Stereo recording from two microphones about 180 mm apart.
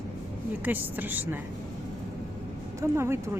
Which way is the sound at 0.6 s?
10° right (ahead or behind).